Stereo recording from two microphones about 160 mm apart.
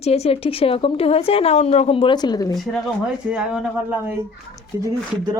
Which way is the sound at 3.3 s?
5° right (ahead or behind).